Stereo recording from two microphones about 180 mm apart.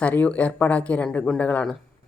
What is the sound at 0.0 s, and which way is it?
Speech, 10° left (ahead or behind).